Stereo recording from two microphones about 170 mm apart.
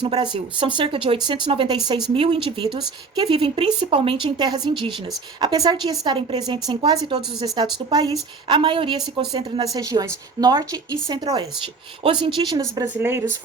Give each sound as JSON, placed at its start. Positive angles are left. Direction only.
{"t": 0.0, "sound": "a woman's voice", "side_deg": -30}
{"t": 12.9, "sound": "speech", "side_deg": -15}